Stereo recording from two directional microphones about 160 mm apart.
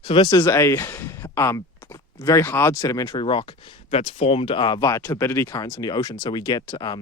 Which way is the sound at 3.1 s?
30° left (ahead or behind).